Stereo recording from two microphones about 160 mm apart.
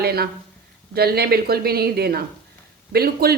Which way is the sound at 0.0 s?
80° right.